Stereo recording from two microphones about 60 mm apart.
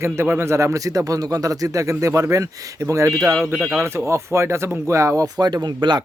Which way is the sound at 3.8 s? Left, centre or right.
Right.